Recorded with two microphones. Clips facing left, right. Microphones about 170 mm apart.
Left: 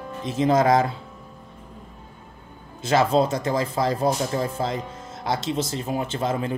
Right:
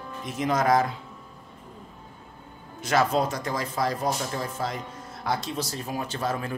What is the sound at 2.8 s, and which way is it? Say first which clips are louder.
Speech: left 4 dB; 30° left (ahead or behind).